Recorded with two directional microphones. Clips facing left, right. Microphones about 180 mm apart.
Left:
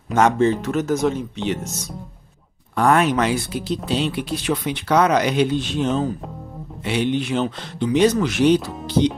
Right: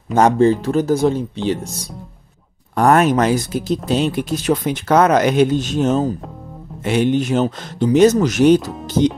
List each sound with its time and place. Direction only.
0.1 s speech: 35° right (ahead or behind)
2.7 s speech: 45° right (ahead or behind)